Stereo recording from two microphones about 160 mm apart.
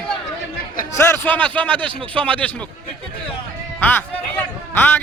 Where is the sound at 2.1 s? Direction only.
10° left (ahead or behind).